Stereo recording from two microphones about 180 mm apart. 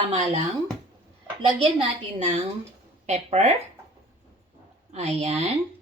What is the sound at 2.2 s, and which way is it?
A woman's voice, 35° right (ahead or behind).